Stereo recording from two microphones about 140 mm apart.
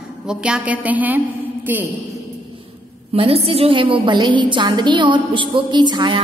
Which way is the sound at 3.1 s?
45° right (ahead or behind).